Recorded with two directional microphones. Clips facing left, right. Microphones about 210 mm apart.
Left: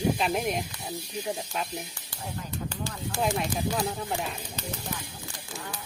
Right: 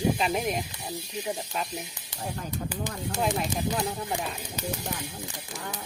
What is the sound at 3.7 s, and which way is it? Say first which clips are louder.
Speech: even; centre (ahead or behind).